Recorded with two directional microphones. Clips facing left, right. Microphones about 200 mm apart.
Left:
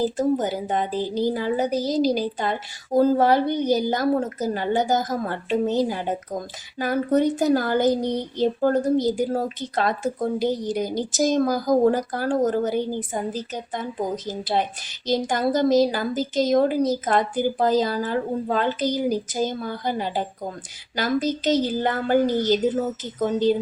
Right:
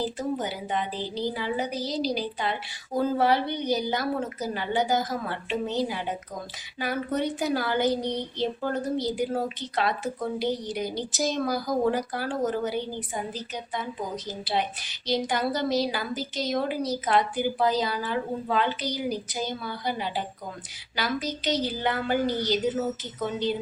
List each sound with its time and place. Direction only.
0.0 s a woman's voice: 45° left (ahead or behind)